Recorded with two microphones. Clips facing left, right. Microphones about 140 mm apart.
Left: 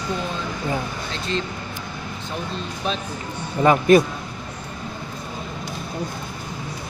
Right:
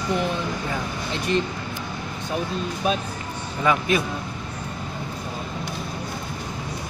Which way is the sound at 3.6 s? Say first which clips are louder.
Left 7 dB; 45° left (ahead or behind).